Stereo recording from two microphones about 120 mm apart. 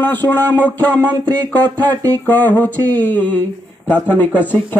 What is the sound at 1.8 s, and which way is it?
Speech, 15° left (ahead or behind).